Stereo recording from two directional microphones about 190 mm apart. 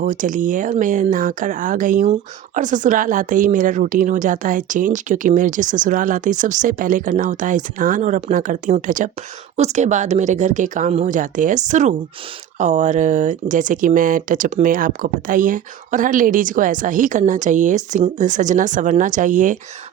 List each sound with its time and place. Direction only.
0.0 s speech: 45° right (ahead or behind)